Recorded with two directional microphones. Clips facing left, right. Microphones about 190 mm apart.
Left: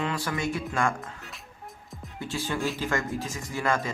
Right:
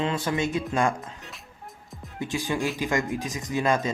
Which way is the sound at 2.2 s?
15° right (ahead or behind).